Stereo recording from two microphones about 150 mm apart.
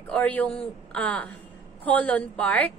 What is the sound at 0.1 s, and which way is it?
Speech, 10° left (ahead or behind).